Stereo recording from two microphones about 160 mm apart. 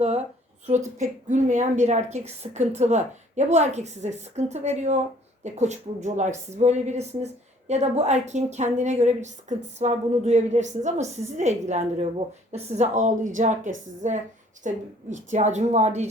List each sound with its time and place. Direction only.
0.9 s a woman's voice: 50° right (ahead or behind)